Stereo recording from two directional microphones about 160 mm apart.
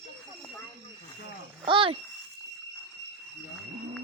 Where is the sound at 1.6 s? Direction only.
35° right (ahead or behind).